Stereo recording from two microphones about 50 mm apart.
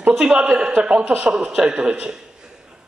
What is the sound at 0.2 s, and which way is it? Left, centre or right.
A man's voice, centre.